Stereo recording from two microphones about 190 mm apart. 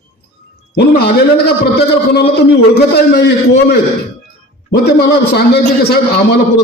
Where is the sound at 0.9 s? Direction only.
60° left (ahead or behind).